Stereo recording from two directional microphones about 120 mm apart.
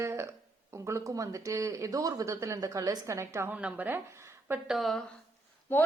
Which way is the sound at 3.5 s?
10° right (ahead or behind).